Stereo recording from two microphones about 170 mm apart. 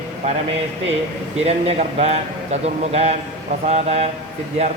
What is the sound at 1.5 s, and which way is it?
A man's voice, 40° right (ahead or behind).